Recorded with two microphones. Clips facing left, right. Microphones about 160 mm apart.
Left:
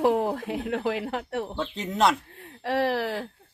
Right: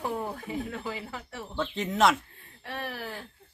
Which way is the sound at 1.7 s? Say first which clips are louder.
Left 1 dB; centre (ahead or behind).